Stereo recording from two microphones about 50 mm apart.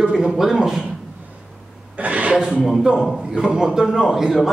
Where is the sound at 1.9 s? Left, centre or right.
Right.